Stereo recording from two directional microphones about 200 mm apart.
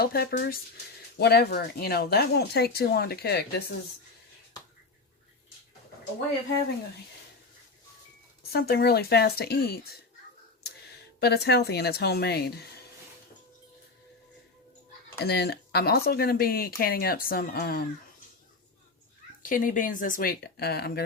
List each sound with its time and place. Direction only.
0.0 s speech: 50° left (ahead or behind)
8.4 s speech: 50° left (ahead or behind)
11.2 s speech: 55° left (ahead or behind)
15.2 s speech: 55° left (ahead or behind)
19.4 s speech: 45° left (ahead or behind)